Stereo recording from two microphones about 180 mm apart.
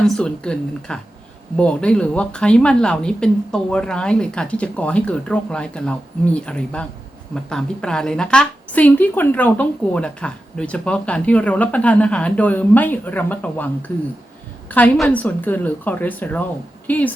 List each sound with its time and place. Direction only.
0.0 s a woman's voice: 5° left (ahead or behind)